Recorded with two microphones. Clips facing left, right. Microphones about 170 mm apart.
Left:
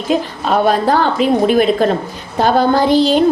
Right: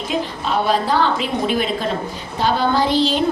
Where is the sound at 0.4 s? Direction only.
55° left (ahead or behind).